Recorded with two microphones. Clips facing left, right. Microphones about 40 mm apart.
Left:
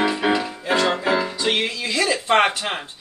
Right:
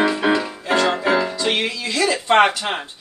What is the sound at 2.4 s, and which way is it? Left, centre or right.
Speech, centre.